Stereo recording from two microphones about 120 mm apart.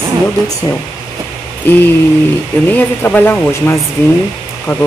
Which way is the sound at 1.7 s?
15° left (ahead or behind).